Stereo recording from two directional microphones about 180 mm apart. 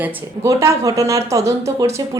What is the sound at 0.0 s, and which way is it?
Speech, 10° right (ahead or behind).